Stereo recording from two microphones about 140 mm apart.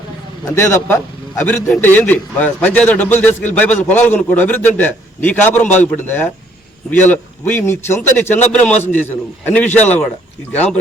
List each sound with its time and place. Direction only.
0.5 s a man's voice: 15° left (ahead or behind)